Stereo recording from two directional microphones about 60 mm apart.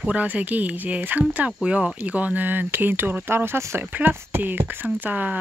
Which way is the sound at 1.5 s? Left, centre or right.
Centre.